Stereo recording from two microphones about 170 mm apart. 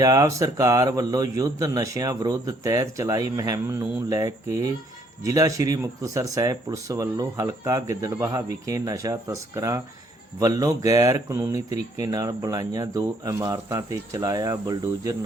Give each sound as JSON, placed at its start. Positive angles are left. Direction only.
{"t": 0.0, "sound": "speech", "side_deg": -20}